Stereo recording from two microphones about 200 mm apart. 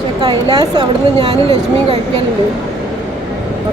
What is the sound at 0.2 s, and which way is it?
Speech, 20° right (ahead or behind).